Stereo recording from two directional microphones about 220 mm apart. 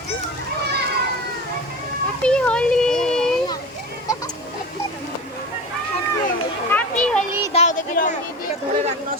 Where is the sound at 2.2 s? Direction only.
5° left (ahead or behind).